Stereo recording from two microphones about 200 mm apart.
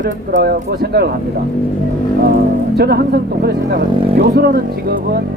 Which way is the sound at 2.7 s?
50° right (ahead or behind).